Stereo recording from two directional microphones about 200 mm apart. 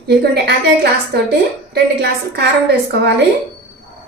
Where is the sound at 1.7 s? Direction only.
55° right (ahead or behind).